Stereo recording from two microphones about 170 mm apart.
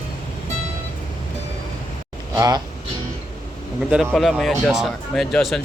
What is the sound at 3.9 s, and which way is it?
Speech, centre (ahead or behind).